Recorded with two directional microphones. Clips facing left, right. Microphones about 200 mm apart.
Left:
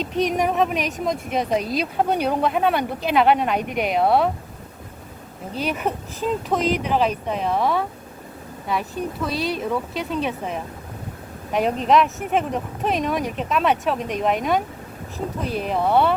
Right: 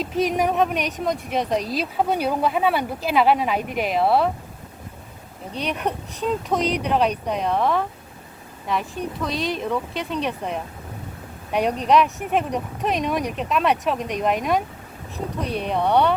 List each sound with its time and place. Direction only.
0.0 s speech: centre (ahead or behind)
5.5 s speech: 5° left (ahead or behind)